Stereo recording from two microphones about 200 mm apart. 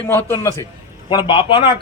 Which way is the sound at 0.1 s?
15° left (ahead or behind).